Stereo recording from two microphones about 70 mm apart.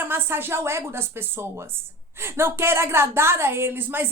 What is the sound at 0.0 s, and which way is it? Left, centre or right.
A woman's voice, right.